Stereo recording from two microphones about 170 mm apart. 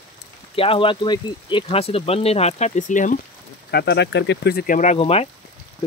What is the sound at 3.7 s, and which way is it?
Speech, 80° left.